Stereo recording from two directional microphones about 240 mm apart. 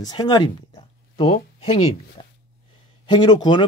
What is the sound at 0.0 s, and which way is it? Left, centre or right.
Speech, centre.